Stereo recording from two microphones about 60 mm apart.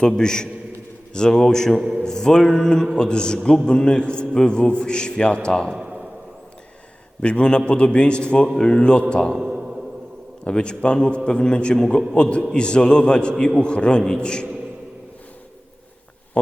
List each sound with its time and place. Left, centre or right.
0.2 s a man's voice: centre
7.2 s a man's voice: centre
9.4 s a sound: centre
10.4 s a man's voice: centre